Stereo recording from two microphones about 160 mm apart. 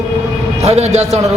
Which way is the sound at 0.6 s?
40° right (ahead or behind).